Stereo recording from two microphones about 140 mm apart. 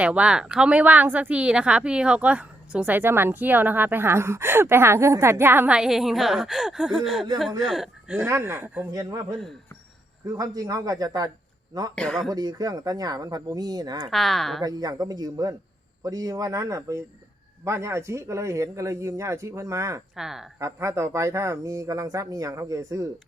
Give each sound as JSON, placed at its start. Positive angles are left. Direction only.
{"t": 0.0, "sound": "a man's voice", "side_deg": -10}
{"t": 8.3, "sound": "speech", "side_deg": -15}
{"t": 8.9, "sound": "speech", "side_deg": -30}
{"t": 10.2, "sound": "speech", "side_deg": -25}
{"t": 11.9, "sound": "speech", "side_deg": 5}
{"t": 12.3, "sound": "speech", "side_deg": -25}
{"t": 14.1, "sound": "speech", "side_deg": 0}
{"t": 14.6, "sound": "speech", "side_deg": -30}
{"t": 20.1, "sound": "speech", "side_deg": -5}
{"t": 20.6, "sound": "speech", "side_deg": -20}